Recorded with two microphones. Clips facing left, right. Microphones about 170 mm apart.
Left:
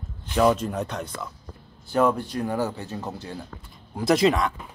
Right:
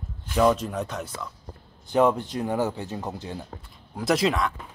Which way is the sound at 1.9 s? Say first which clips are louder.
Right 1 dB; 20° right (ahead or behind).